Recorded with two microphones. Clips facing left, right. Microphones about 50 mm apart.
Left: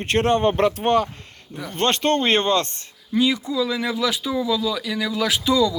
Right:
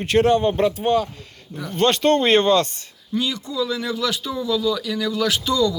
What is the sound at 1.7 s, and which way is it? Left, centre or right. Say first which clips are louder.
Speech: right 3 dB; left.